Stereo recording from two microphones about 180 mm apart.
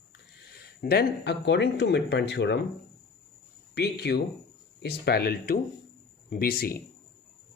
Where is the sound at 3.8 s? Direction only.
65° left (ahead or behind).